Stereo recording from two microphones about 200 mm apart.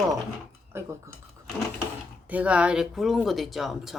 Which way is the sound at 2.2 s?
5° right (ahead or behind).